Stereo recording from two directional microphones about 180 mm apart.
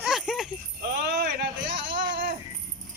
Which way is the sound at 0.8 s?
55° right (ahead or behind).